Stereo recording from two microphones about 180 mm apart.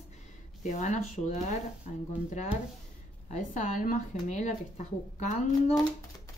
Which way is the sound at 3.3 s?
45° left (ahead or behind).